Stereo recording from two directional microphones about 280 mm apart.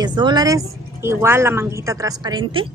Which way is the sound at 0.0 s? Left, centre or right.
Centre.